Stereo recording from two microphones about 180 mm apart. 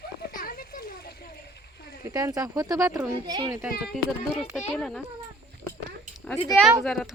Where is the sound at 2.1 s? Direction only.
20° right (ahead or behind).